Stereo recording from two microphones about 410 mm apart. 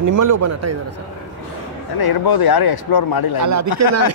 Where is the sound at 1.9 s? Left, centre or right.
Left.